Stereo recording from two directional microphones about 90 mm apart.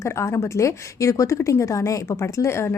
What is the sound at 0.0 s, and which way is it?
A woman's voice, 35° left (ahead or behind).